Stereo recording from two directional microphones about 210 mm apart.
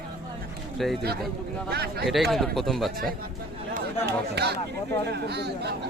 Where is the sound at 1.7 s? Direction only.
50° right (ahead or behind).